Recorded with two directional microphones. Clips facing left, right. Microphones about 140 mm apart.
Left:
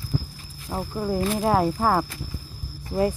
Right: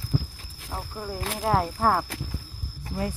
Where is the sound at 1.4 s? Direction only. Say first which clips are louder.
Even; 5° left (ahead or behind).